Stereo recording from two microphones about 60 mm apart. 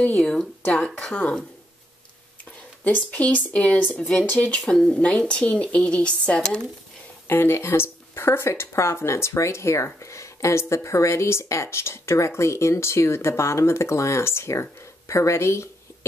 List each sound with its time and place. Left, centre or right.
0.0 s speech: centre
2.8 s speech: left
4.6 s a woman's voice: centre
7.2 s speech: left